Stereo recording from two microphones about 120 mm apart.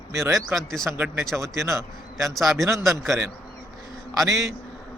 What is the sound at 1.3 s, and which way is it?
A man's voice, 25° right (ahead or behind).